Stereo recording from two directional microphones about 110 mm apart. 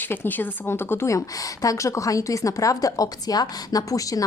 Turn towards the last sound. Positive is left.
turn(degrees=30)  # may be behind; listen again after turning